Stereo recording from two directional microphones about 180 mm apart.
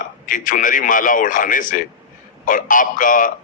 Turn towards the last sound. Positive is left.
turn(degrees=50)  # may be behind; listen again after turning